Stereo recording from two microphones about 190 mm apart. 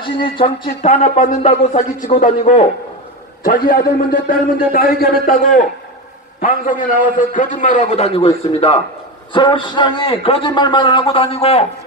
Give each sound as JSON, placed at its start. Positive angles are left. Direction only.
{"t": 0.0, "sound": "a man's voice", "side_deg": 25}
{"t": 1.0, "sound": "a man's voice", "side_deg": 45}